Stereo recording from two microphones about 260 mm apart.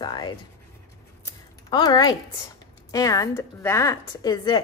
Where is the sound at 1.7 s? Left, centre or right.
Centre.